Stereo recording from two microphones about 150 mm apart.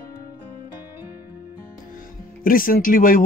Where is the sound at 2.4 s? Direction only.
70° left (ahead or behind).